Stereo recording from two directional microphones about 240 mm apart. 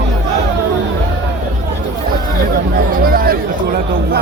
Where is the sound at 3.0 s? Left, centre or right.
Right.